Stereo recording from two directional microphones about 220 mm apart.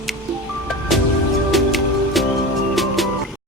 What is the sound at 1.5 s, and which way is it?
Music, centre (ahead or behind).